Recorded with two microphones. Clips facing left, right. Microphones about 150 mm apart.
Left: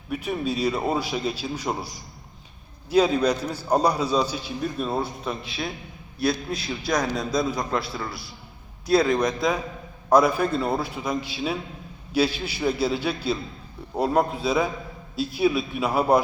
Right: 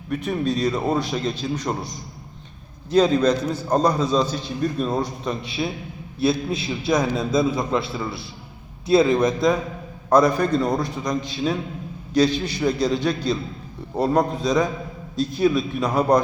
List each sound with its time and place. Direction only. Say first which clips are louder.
0.1 s a man's voice: right 3 dB; 5° left (ahead or behind)
2.9 s a man's voice: right 3 dB; 10° left (ahead or behind)
6.1 s a man's voice: right 4 dB; 25° right (ahead or behind)
6.6 s a man's voice: right 4 dB; centre (ahead or behind)
8.9 s a man's voice: right 3 dB; centre (ahead or behind)